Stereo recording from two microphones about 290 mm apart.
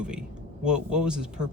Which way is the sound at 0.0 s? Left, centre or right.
Centre.